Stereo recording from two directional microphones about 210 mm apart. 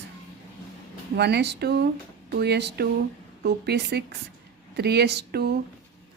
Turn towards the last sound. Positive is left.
turn(degrees=-50)  # may be behind; listen again after turning